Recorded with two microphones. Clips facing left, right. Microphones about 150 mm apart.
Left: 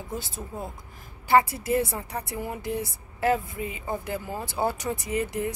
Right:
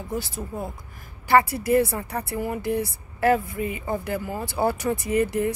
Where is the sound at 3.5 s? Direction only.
60° right (ahead or behind).